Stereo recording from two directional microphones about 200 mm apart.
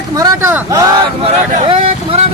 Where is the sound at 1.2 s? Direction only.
30° right (ahead or behind).